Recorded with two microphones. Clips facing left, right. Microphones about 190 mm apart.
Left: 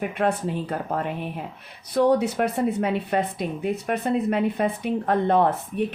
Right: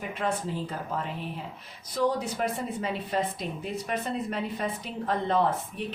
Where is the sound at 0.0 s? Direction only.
65° left (ahead or behind).